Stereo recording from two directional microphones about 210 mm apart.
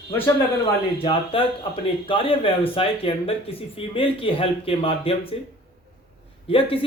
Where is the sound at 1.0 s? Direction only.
25° left (ahead or behind).